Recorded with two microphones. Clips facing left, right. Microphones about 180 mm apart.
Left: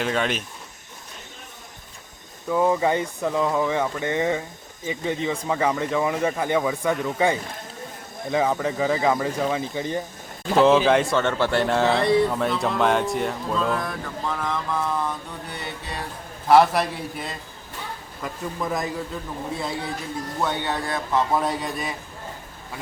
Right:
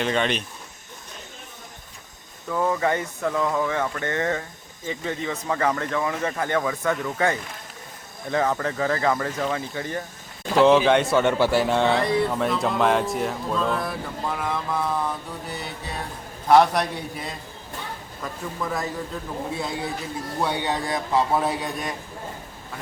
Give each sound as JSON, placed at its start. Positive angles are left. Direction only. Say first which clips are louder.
{"t": 0.0, "sound": "speech", "louder": "right 1 dB", "side_deg": 5}
{"t": 2.5, "sound": "speech", "louder": "left 3 dB", "side_deg": 15}
{"t": 10.6, "sound": "speech", "louder": "even", "side_deg": 0}
{"t": 11.2, "sound": "speech", "louder": "right 2 dB", "side_deg": -10}
{"t": 15.5, "sound": "music", "louder": "left 2 dB", "side_deg": 0}
{"t": 16.5, "sound": "speech", "louder": "even", "side_deg": 0}
{"t": 18.2, "sound": "speech", "louder": "left 2 dB", "side_deg": 15}
{"t": 19.1, "sound": "speech", "louder": "right 1 dB", "side_deg": 0}
{"t": 20.4, "sound": "speech", "louder": "right 1 dB", "side_deg": -10}